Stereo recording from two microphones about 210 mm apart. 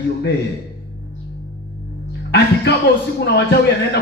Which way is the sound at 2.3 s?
50° left (ahead or behind).